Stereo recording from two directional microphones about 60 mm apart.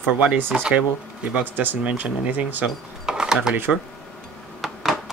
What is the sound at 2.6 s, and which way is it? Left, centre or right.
Cash register, centre.